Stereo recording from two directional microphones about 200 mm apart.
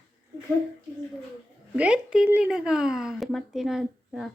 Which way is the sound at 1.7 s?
5° right (ahead or behind).